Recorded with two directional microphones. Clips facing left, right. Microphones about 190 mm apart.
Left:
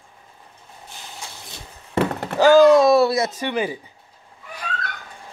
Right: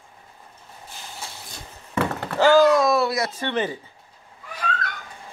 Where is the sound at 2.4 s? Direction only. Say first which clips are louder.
Left 4 dB; 15° left (ahead or behind).